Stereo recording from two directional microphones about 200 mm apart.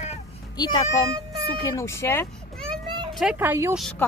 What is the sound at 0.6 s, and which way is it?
Speech, 20° left (ahead or behind).